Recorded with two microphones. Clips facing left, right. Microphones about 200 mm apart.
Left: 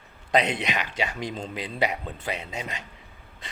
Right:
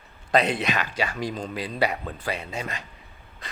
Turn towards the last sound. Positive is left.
turn(degrees=25)  # may be behind; listen again after turning